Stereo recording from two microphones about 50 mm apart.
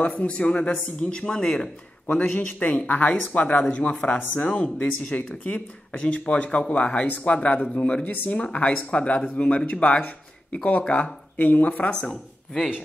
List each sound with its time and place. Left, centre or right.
0.0 s speech: left
2.3 s speech: left